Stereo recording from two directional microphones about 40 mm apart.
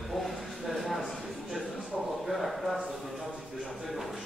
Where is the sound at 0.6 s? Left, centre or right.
Centre.